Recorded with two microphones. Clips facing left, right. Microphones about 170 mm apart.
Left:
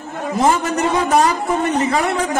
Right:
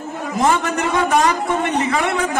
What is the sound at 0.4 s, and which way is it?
A man's voice, 35° left (ahead or behind).